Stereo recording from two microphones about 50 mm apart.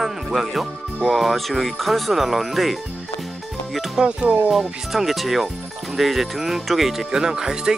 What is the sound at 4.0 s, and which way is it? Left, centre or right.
Speech, centre.